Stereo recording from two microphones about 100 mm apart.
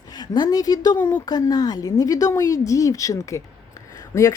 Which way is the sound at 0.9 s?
25° left (ahead or behind).